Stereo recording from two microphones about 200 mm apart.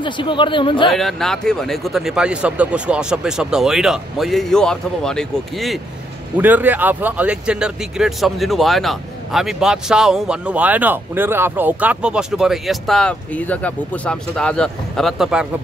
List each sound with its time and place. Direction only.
0.0 s speech: 25° left (ahead or behind)
0.8 s speech: centre (ahead or behind)
6.3 s speech: 10° right (ahead or behind)